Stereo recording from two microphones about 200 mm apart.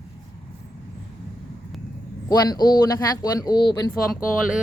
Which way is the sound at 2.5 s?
20° left (ahead or behind).